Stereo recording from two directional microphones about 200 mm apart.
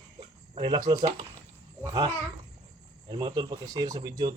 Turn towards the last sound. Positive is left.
turn(degrees=-20)  # may be behind; listen again after turning